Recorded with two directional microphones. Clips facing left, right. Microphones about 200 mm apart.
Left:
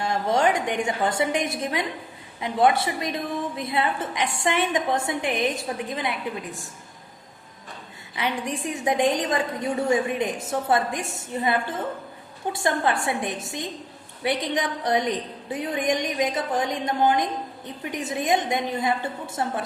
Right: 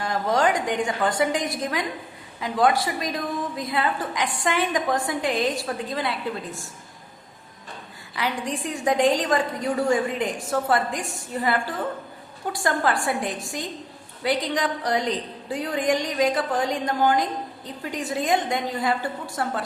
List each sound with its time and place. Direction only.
0.0 s a woman's voice: 25° left (ahead or behind)
8.6 s a woman's voice: 20° left (ahead or behind)